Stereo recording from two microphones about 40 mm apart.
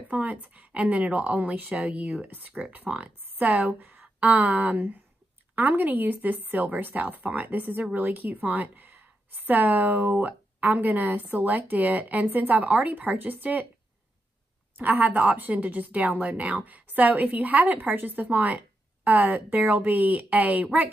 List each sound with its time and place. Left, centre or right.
0.1 s speech: right
2.2 s a woman's voice: right
14.8 s speech: right